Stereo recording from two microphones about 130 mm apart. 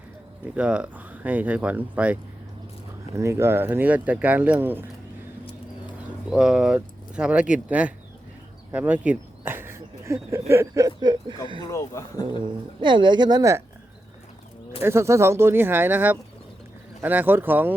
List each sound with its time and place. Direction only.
0.5 s speech: 10° right (ahead or behind)
3.2 s speech: 20° right (ahead or behind)
6.3 s speech: 5° right (ahead or behind)
8.7 s a sound: 10° right (ahead or behind)
10.5 s speech: 20° right (ahead or behind)
11.7 s speech: 25° left (ahead or behind)
12.4 s speech: 40° right (ahead or behind)
14.8 s speech: 20° right (ahead or behind)